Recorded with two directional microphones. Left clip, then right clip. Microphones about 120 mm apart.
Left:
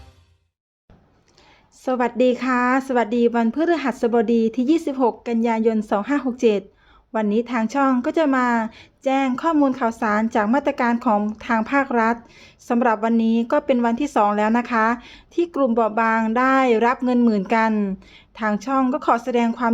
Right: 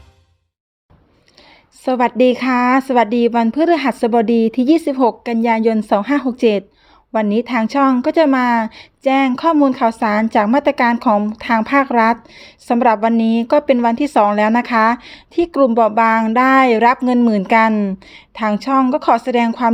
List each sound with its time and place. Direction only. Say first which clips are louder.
1.8 s a woman's voice: right 5 dB; 30° right (ahead or behind)